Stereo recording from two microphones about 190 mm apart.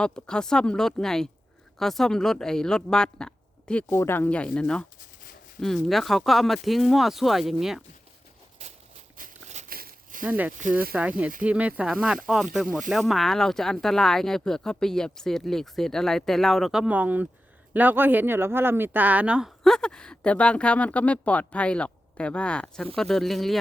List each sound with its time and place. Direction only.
0.0 s speech: 5° left (ahead or behind)
9.1 s a sound: 40° right (ahead or behind)
10.2 s speech: 10° right (ahead or behind)
10.6 s speech: 45° right (ahead or behind)
11.4 s speech: 5° right (ahead or behind)